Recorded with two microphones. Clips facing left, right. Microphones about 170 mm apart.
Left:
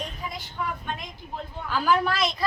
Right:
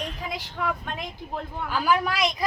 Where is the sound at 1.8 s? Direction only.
10° right (ahead or behind).